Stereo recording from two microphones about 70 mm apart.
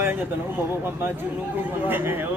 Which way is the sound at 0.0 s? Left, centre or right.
Right.